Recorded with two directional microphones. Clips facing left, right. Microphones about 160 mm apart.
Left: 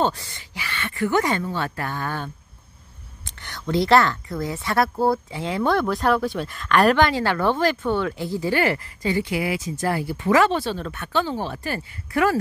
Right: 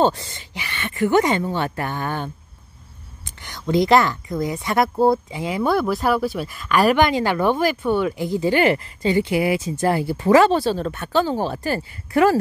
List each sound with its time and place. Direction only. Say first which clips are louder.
0.0 s speech: right 4 dB; 25° right (ahead or behind)
3.3 s a woman's voice: right 3 dB; 15° right (ahead or behind)
5.4 s speech: left 1 dB; 10° right (ahead or behind); by 12.4 s 30° right (ahead or behind)